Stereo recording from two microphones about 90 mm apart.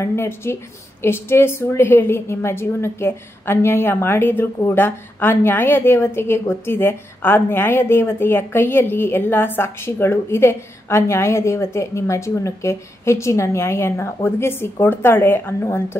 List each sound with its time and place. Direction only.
0.0 s a woman's voice: 30° left (ahead or behind)